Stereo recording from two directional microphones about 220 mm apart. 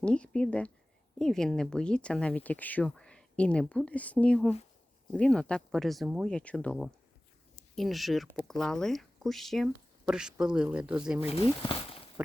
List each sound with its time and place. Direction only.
0.0 s speech: 5° left (ahead or behind)
11.3 s speech: 25° left (ahead or behind)